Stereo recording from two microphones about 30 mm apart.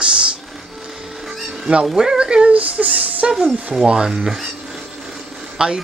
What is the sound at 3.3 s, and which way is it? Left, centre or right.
Speech, centre.